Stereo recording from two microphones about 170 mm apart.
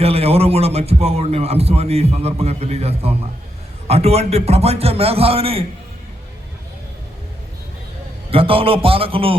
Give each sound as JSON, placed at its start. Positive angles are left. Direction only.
{"t": 0.0, "sound": "a man's voice", "side_deg": -35}
{"t": 8.3, "sound": "a man's voice", "side_deg": -35}